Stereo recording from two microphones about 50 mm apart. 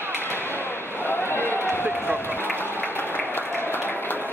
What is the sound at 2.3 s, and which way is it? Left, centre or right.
Applause, left.